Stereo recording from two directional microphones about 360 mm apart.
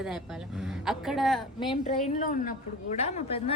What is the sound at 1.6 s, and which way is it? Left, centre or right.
Speech, centre.